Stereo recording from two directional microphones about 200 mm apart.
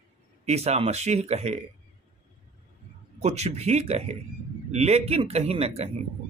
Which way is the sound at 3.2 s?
30° right (ahead or behind).